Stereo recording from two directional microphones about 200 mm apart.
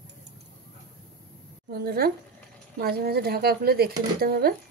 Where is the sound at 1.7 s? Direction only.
50° right (ahead or behind).